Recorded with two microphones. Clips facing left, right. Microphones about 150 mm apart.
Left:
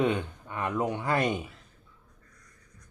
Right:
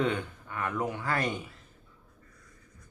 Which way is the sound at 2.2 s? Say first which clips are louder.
Right 3 dB; 5° right (ahead or behind).